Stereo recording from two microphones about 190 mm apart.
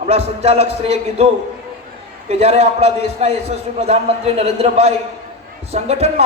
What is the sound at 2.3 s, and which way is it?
A man's voice, 35° right (ahead or behind).